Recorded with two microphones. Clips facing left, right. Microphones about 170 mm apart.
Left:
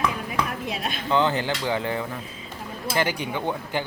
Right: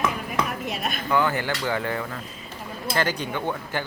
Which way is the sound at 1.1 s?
20° left (ahead or behind).